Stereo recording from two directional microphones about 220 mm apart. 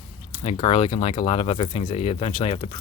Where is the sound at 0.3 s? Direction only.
25° left (ahead or behind).